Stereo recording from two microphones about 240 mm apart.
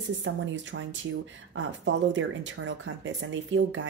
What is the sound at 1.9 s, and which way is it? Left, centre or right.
Speech, right.